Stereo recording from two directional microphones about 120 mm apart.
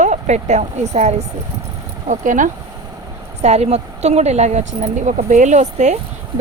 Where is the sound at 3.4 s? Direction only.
65° right (ahead or behind).